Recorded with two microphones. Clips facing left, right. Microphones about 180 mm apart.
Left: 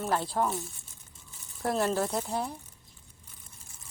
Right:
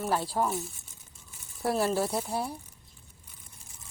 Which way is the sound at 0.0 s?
5° right (ahead or behind).